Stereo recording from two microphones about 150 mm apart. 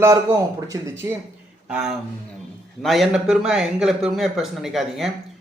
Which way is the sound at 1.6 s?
5° right (ahead or behind).